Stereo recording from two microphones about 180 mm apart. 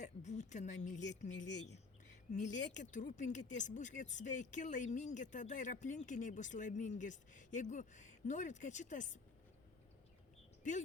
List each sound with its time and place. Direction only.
0.0 s speech: 40° left (ahead or behind)
10.6 s speech: 45° left (ahead or behind)